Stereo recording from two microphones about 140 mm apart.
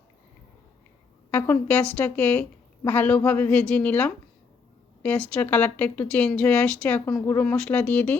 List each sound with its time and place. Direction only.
1.3 s a woman's voice: 15° left (ahead or behind)
7.0 s speech: 20° left (ahead or behind)
7.3 s a woman's voice: 5° left (ahead or behind)